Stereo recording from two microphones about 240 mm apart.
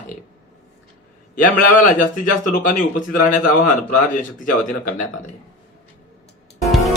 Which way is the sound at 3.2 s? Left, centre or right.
Left.